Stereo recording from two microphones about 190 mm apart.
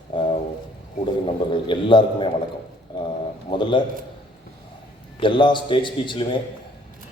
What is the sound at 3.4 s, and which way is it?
Speech, 25° left (ahead or behind).